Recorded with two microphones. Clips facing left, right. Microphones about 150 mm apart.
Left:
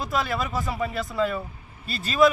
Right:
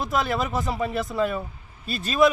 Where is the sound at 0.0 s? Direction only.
20° right (ahead or behind).